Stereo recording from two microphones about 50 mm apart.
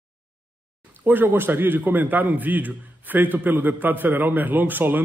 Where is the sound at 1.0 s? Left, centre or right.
Right.